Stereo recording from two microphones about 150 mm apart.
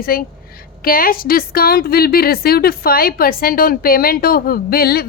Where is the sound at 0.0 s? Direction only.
80° left.